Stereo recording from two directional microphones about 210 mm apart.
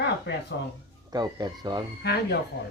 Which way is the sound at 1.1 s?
20° right (ahead or behind).